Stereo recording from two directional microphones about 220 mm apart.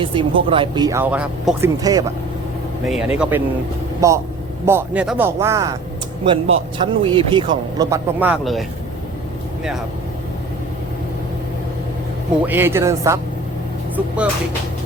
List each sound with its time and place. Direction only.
0.0 s speech: 25° right (ahead or behind); by 1.7 s 5° right (ahead or behind)
1.8 s speech: 15° right (ahead or behind)
2.8 s speech: 5° right (ahead or behind)
12.5 s speech: 10° right (ahead or behind)